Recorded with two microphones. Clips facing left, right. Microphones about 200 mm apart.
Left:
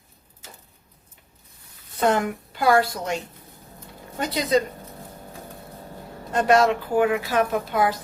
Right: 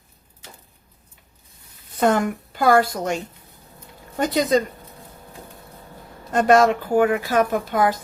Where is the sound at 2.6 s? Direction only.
45° right (ahead or behind).